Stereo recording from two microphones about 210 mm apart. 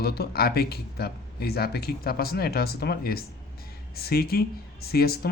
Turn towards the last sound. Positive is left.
turn(degrees=45)  # may be behind; listen again after turning